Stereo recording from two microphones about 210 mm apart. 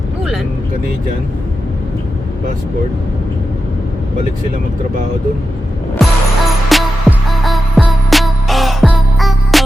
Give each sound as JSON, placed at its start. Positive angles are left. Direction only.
{"t": 6.0, "sound": "music", "side_deg": 0}